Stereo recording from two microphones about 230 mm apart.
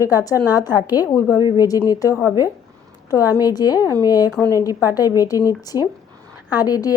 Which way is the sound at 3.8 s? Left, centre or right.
Centre.